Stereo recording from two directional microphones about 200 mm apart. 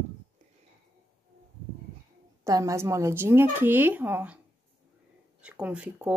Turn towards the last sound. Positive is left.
turn(degrees=-5)  # may be behind; listen again after turning